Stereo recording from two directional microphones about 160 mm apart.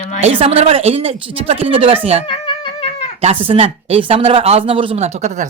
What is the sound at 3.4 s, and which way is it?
Speech, 35° right (ahead or behind).